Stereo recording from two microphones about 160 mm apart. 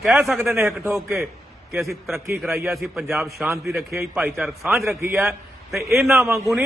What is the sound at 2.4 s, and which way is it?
Speech, 15° right (ahead or behind).